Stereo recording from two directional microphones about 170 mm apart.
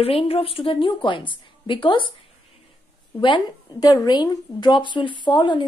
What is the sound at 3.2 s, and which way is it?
A woman's voice, 25° left (ahead or behind).